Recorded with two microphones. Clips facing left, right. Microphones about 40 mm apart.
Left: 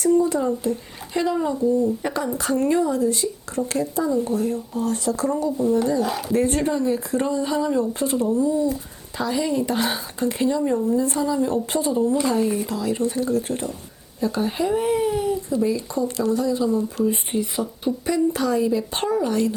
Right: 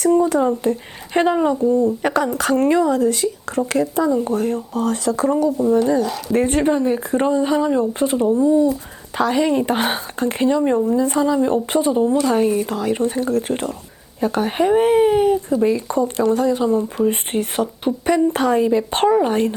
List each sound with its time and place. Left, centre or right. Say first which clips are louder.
0.0 s speech: right 3 dB; right
5.6 s speech: right 1 dB; right
6.0 s speech: right 2 dB; centre
6.3 s speech: right 5 dB; right
9.1 s speech: right 6 dB; right
17.3 s speech: right 4 dB; right
18.0 s speech: right 5 dB; right